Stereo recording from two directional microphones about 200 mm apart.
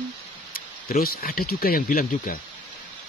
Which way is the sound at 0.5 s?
45° left (ahead or behind).